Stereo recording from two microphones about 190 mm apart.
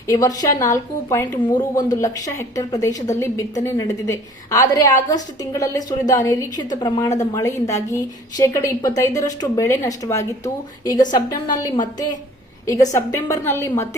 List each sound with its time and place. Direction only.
0.1 s a woman's voice: 15° left (ahead or behind)